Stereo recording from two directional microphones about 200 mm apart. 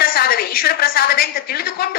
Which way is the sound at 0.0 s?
50° left (ahead or behind).